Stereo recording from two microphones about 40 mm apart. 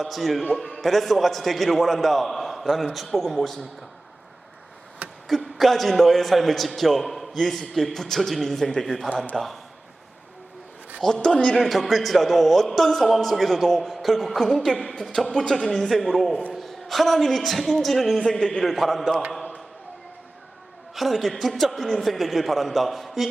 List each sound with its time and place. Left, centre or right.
0.0 s a man's voice: centre
5.0 s a sound: right
5.5 s a man's voice: centre
11.0 s speech: centre
11.5 s a man's voice: centre
15.9 s a man's voice: centre
18.2 s a man's voice: left
18.6 s a man's voice: centre
20.9 s a man's voice: centre